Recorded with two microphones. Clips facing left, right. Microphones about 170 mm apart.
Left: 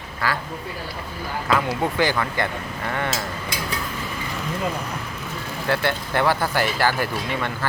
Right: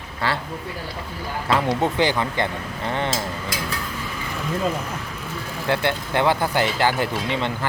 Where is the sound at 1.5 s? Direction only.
30° right (ahead or behind).